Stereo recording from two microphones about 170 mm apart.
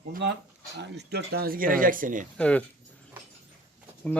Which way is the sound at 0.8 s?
75° right (ahead or behind).